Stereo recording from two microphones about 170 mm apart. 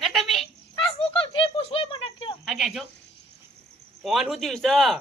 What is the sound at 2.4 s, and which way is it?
Cricket, centre (ahead or behind).